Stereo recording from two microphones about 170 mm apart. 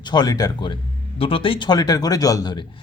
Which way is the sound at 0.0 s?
25° left (ahead or behind).